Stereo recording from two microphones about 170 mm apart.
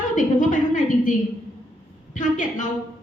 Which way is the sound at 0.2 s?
50° left (ahead or behind).